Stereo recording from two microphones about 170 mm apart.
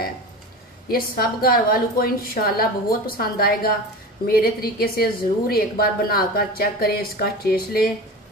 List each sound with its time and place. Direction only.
0.8 s a woman's voice: 60° left (ahead or behind)